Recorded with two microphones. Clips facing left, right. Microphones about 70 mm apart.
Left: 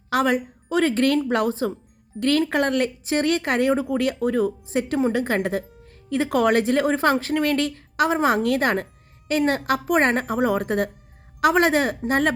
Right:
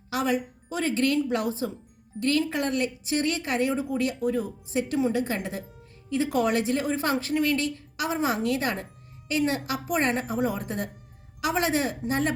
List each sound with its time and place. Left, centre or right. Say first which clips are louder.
0.1 s speech: left 5 dB; left